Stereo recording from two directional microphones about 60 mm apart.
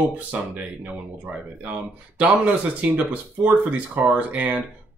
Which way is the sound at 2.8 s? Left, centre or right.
Right.